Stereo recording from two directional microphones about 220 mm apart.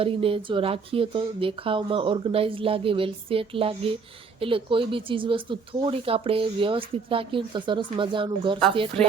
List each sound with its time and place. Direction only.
0.0 s speech: 25° right (ahead or behind)